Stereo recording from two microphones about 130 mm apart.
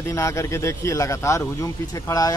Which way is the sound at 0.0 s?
25° left (ahead or behind).